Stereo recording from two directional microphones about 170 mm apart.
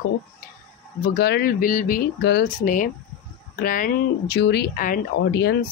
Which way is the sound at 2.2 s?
80° left.